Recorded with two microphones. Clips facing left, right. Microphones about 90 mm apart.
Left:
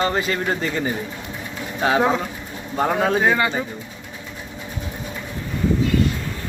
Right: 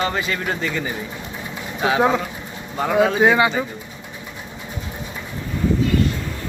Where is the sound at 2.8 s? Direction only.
40° left (ahead or behind).